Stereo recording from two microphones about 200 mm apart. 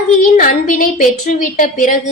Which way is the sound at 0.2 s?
40° left (ahead or behind).